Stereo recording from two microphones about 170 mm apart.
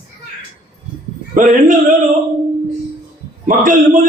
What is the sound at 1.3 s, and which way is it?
Speech, 50° right (ahead or behind).